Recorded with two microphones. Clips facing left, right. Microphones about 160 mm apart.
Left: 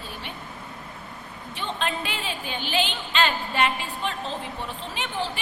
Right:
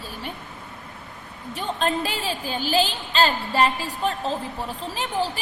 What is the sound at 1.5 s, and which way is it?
A woman's voice, 40° right (ahead or behind).